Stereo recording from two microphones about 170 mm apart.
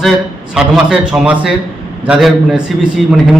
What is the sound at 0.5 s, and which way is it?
A man's voice, 5° right (ahead or behind).